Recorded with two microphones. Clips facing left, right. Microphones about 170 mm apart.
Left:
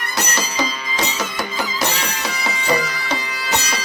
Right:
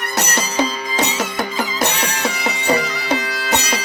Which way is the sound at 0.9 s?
55° right (ahead or behind).